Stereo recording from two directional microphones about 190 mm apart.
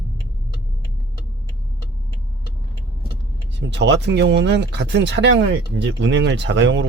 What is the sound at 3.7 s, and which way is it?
Speech, 70° right (ahead or behind).